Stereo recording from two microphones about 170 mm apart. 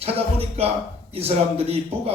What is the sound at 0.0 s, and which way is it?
Speech, 35° right (ahead or behind).